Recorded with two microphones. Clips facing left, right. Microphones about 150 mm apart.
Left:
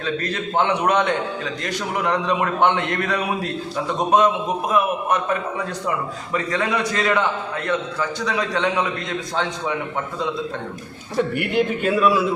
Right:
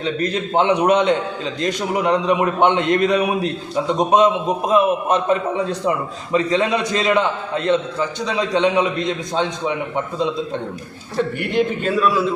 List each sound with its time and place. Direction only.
0.0 s a man's voice: 20° right (ahead or behind)
11.3 s a man's voice: 10° left (ahead or behind)